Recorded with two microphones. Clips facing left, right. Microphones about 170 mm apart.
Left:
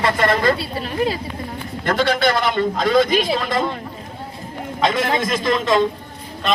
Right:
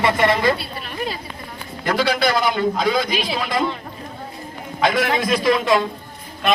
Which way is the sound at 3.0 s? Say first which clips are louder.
Left 5 dB; 50° left (ahead or behind).